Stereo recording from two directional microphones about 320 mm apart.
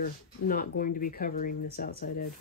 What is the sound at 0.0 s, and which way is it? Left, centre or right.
Speech, left.